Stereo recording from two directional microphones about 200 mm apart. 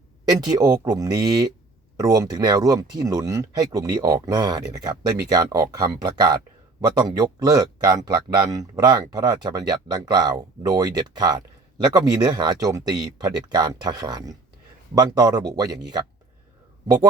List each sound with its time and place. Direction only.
0.3 s speech: 20° right (ahead or behind)